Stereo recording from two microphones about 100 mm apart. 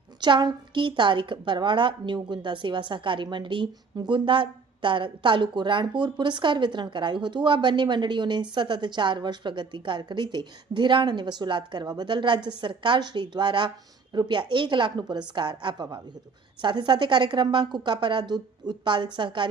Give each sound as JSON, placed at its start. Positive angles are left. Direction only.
{"t": 0.2, "sound": "a woman's voice", "side_deg": -50}